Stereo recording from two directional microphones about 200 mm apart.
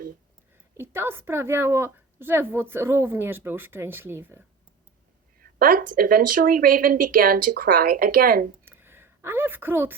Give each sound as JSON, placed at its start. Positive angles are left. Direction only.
{"t": 0.8, "sound": "a woman's voice", "side_deg": -10}
{"t": 5.4, "sound": "speech", "side_deg": -45}
{"t": 8.6, "sound": "a sound", "side_deg": -10}